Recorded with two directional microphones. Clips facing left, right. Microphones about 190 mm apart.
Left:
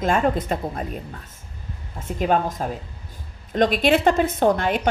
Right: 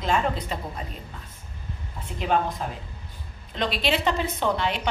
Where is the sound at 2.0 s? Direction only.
45° left (ahead or behind).